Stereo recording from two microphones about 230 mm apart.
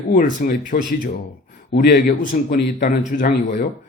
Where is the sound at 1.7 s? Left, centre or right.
Left.